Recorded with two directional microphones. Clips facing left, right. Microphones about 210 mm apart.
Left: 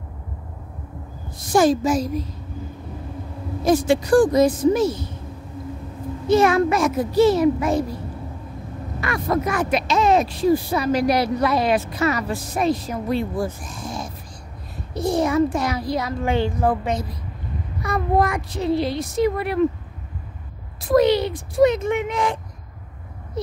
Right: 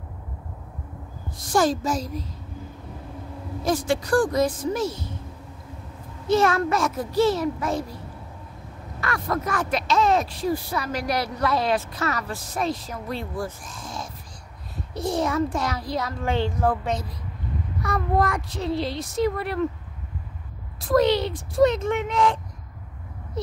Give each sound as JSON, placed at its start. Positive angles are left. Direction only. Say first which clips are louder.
{"t": 1.5, "sound": "a woman's voice", "louder": "left 5 dB", "side_deg": 20}
{"t": 3.6, "sound": "a woman's voice", "louder": "left 6 dB", "side_deg": 20}
{"t": 6.2, "sound": "speech", "louder": "left 4 dB", "side_deg": 15}
{"t": 9.0, "sound": "speech", "louder": "left 4 dB", "side_deg": 15}
{"t": 20.9, "sound": "speech", "louder": "left 3 dB", "side_deg": 10}